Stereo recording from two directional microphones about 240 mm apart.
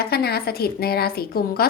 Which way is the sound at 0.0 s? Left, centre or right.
Left.